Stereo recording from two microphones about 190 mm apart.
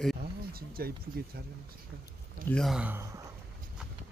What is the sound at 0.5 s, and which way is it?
Speech, 50° right (ahead or behind).